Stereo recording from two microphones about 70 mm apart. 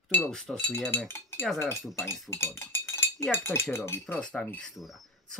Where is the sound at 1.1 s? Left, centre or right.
Left.